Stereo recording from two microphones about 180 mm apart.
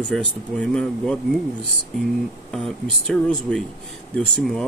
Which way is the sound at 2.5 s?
Centre (ahead or behind).